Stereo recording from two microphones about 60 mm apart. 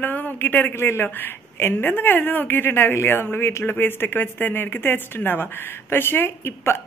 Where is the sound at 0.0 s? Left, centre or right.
Left.